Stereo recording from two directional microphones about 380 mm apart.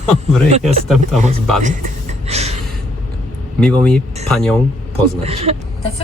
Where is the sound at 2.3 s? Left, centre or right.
Centre.